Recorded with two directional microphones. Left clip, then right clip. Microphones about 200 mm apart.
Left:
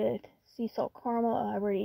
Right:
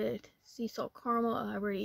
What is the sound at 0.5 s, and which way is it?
Speech, 30° right (ahead or behind).